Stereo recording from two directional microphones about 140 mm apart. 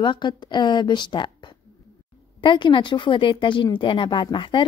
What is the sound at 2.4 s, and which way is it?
Speech, 35° left (ahead or behind).